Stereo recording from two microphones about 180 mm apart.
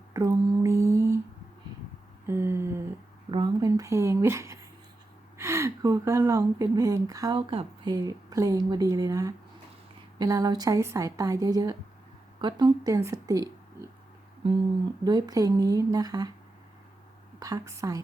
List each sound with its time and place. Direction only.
0.1 s mantra: 20° right (ahead or behind)
2.2 s humming: 15° right (ahead or behind)
3.3 s a sound: 20° right (ahead or behind)
5.4 s speech: 15° right (ahead or behind)
15.0 s speech: 20° right (ahead or behind)
17.4 s speech: 20° right (ahead or behind)